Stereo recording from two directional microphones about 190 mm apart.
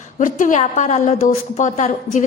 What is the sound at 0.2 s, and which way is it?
A woman's voice, 45° left (ahead or behind).